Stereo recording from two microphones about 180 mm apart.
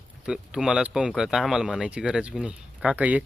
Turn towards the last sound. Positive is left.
turn(degrees=-10)  # may be behind; listen again after turning